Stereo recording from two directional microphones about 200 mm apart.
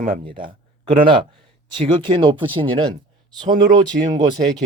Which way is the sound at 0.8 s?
25° right (ahead or behind).